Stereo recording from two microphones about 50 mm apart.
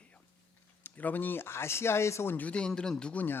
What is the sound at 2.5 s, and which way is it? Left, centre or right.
Speech, centre.